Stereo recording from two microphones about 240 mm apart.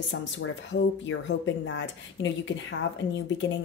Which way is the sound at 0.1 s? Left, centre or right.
Left.